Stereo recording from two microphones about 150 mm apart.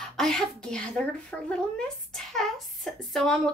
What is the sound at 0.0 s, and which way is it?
A woman's voice, 5° left (ahead or behind).